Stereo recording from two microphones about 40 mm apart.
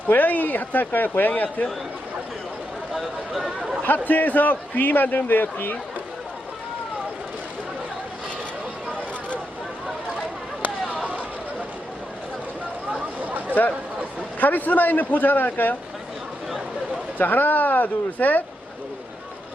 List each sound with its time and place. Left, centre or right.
0.1 s a man's voice: left
2.9 s a sound: centre
3.8 s a man's voice: left
14.3 s a man's voice: left
17.2 s a man's voice: left